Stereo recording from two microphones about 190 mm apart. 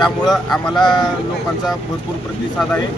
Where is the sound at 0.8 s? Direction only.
20° left (ahead or behind).